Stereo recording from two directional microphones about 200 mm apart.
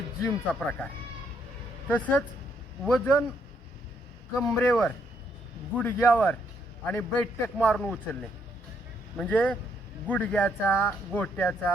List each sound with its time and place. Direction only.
0.3 s speech: 10° left (ahead or behind)
1.9 s speech: 5° left (ahead or behind)
4.5 s speech: 5° left (ahead or behind)